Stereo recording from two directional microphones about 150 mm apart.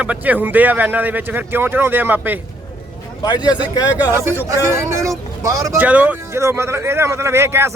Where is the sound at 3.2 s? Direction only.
30° left (ahead or behind).